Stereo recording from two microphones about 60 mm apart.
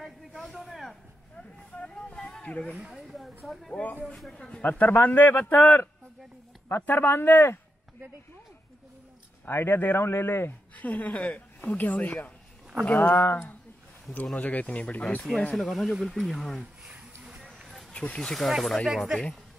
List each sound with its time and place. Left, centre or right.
0.4 s a sound: centre
1.3 s a sound: centre
2.4 s speech: left
3.4 s speech: centre
4.3 s speech: centre; by 7.6 s left
9.5 s speech: left
10.8 s speech: left
14.3 s speech: left
15.5 s speech: centre
16.8 s a sound: centre
17.9 s speech: centre
18.5 s speech: centre
18.9 s speech: centre